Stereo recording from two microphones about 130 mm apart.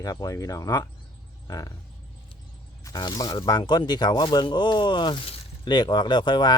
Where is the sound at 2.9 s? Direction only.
30° left (ahead or behind).